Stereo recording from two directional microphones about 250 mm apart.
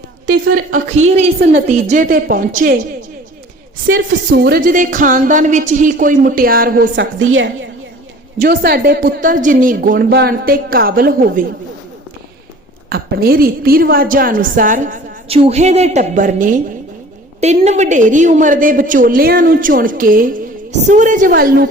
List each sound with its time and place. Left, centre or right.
0.3 s a woman's voice: right
3.8 s a woman's voice: right
12.9 s a woman's voice: right